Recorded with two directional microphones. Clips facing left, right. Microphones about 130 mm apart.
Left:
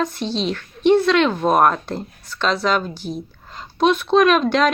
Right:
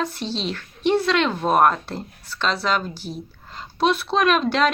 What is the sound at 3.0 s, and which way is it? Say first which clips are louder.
Speech: left 5 dB; 45° left (ahead or behind).